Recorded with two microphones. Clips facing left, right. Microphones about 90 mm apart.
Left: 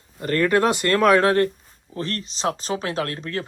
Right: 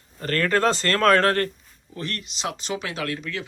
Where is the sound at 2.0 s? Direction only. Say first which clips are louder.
Left 4 dB; 35° left (ahead or behind).